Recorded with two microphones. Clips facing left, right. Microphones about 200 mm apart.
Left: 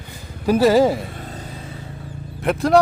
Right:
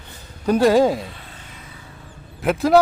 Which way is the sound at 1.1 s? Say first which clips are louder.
Left 9 dB; 40° left (ahead or behind).